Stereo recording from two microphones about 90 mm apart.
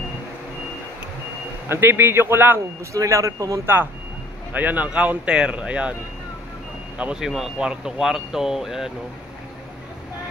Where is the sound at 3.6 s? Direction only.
25° right (ahead or behind).